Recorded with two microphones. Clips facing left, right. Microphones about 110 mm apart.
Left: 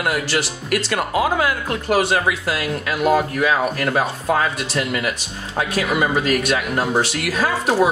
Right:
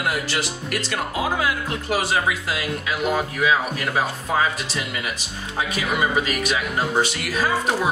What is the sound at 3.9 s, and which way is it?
Speech, 60° left (ahead or behind).